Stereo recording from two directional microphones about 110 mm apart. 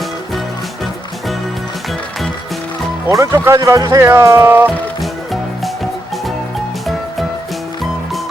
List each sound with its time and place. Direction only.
3.1 s speech: 30° right (ahead or behind)
4.9 s music: centre (ahead or behind)